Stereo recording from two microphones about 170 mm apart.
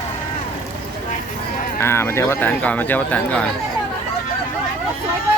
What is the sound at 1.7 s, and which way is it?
Speech, 15° left (ahead or behind).